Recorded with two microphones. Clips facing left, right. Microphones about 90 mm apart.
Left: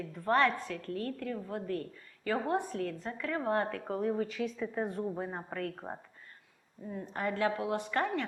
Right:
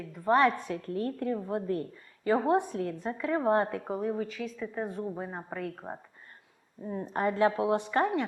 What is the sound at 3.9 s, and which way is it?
A woman's voice, 5° right (ahead or behind).